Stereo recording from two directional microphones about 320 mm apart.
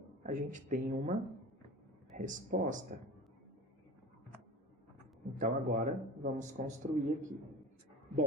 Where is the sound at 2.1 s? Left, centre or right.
Right.